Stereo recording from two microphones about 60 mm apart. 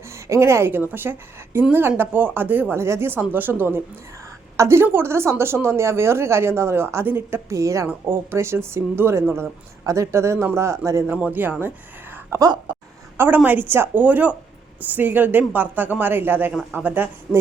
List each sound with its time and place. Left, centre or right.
0.3 s speech: right
2.7 s speech: right
4.5 s speech: right
7.5 s a woman's voice: right
8.0 s speech: right
9.8 s a woman's voice: right
11.0 s a woman's voice: right
12.3 s speech: right
13.1 s a woman's voice: right